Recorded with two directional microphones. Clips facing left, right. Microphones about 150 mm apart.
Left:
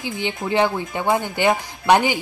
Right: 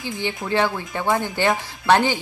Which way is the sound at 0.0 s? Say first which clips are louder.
Left 1 dB; 15° left (ahead or behind).